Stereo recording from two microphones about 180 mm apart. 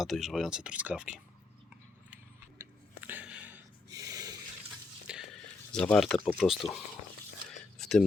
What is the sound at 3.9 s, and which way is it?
Snort, 20° right (ahead or behind).